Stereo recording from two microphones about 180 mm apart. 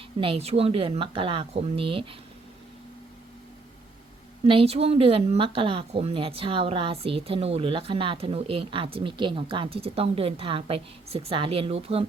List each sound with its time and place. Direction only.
0.2 s speech: 35° right (ahead or behind)
4.4 s speech: 30° right (ahead or behind)